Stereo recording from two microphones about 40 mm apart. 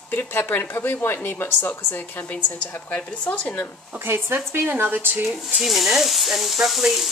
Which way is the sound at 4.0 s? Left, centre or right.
Right.